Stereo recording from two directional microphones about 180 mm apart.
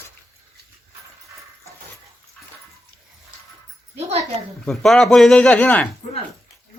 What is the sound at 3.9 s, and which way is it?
Speech, 35° right (ahead or behind).